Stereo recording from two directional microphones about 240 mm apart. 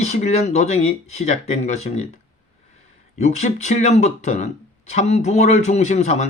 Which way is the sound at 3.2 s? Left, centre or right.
Left.